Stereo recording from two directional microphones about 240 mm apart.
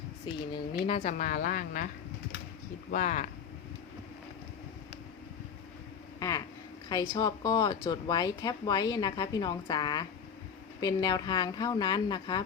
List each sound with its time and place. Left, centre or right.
0.3 s speech: centre
0.9 s a woman's voice: left
2.9 s speech: left
6.1 s a sound: centre
6.8 s speech: centre